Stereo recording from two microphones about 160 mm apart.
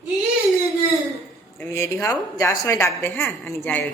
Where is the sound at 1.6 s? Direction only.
15° left (ahead or behind).